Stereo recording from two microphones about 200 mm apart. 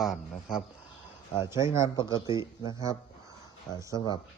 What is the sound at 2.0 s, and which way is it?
Speech, 25° left (ahead or behind).